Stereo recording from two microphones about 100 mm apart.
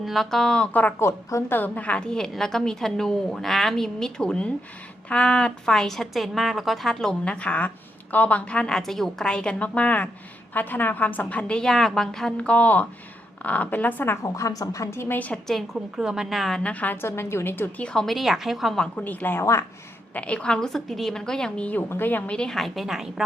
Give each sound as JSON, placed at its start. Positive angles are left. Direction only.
{"t": 0.0, "sound": "a woman's voice", "side_deg": 0}
{"t": 14.3, "sound": "a woman's voice", "side_deg": 35}
{"t": 15.4, "sound": "a woman's voice", "side_deg": 0}
{"t": 18.9, "sound": "a woman's voice", "side_deg": 15}
{"t": 20.1, "sound": "a woman's voice", "side_deg": 10}